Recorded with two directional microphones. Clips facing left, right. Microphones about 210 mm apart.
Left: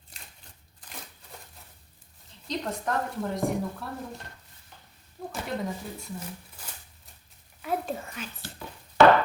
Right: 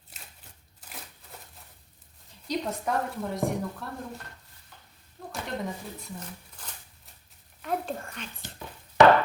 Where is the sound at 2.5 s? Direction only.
5° right (ahead or behind).